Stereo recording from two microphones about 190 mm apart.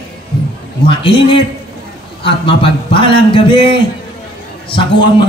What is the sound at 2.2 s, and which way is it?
Speech, 25° left (ahead or behind).